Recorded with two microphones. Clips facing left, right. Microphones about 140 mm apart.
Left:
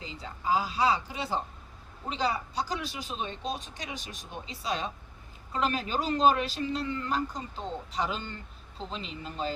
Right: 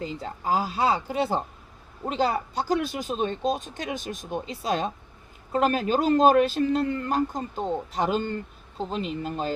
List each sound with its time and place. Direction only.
0.0 s speech: 50° right (ahead or behind)